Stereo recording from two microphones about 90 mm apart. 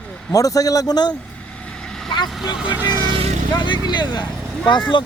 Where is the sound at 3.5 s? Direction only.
60° left (ahead or behind).